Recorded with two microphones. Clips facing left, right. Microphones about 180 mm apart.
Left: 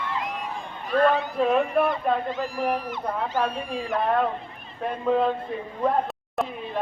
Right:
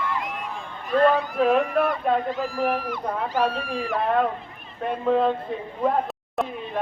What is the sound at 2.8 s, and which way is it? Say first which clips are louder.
Speech: right 1 dB; 20° left (ahead or behind).